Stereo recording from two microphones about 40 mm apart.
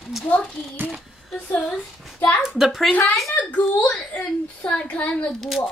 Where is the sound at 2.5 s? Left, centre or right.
Centre.